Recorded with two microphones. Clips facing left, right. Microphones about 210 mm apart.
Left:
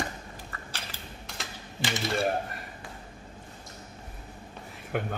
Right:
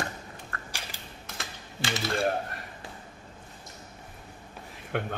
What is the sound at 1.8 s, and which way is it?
Speech, 20° left (ahead or behind).